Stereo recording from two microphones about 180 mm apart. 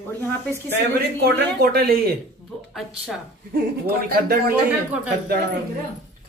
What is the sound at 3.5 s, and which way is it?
A man's voice, 60° right (ahead or behind).